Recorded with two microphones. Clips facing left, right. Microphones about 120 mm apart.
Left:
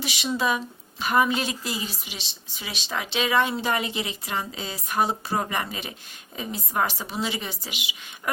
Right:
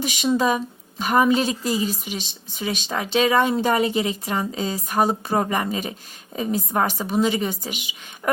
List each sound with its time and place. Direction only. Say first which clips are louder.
0.0 s a woman's voice: right 6 dB; 45° right (ahead or behind)